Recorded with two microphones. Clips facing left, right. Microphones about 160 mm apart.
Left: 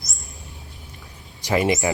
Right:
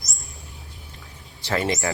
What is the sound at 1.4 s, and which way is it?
Speech, 15° left (ahead or behind).